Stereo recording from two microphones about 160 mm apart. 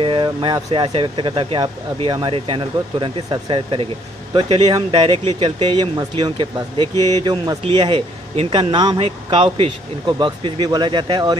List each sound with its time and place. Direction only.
0.0 s speech: 30° right (ahead or behind)